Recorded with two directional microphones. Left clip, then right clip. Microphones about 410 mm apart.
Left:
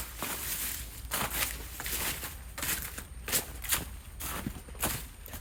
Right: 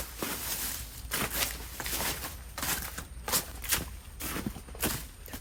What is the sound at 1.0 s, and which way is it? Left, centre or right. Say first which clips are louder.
Boat: right 1 dB; centre.